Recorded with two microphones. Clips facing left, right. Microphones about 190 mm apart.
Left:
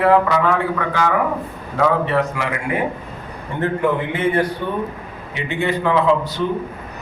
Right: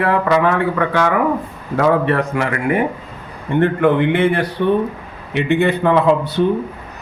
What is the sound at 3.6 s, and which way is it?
A man's voice, 70° right (ahead or behind).